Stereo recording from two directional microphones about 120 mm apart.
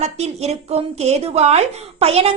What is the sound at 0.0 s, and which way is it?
A woman's voice, 65° right (ahead or behind).